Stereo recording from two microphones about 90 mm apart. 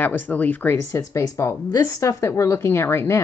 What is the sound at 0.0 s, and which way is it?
Speech, 20° left (ahead or behind).